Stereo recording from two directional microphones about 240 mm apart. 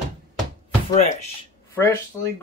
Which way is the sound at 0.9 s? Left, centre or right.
Left.